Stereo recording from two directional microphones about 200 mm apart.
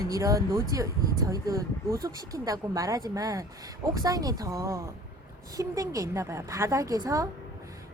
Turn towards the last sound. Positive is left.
turn(degrees=-15)  # may be behind; listen again after turning